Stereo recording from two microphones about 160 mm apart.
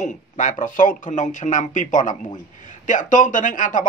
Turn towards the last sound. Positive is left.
turn(degrees=55)  # may be behind; listen again after turning